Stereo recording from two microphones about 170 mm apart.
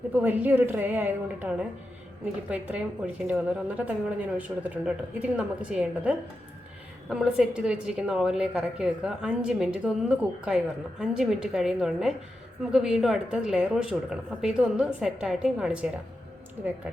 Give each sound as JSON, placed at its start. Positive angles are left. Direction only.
{"t": 0.1, "sound": "a woman's voice", "side_deg": -10}